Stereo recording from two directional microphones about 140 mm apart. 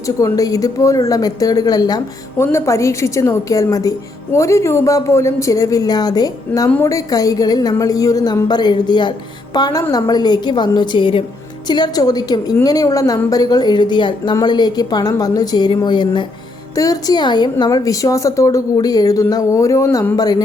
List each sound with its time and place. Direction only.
0.2 s a woman's voice: 25° left (ahead or behind)